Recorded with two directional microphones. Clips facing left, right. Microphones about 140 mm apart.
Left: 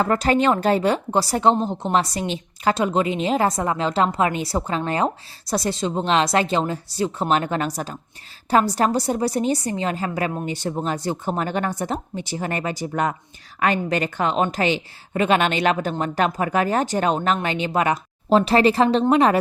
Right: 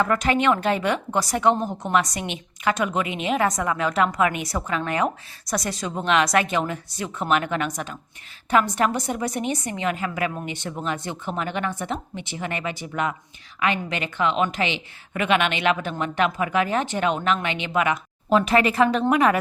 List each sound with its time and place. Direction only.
0.0 s a woman's voice: 35° left (ahead or behind)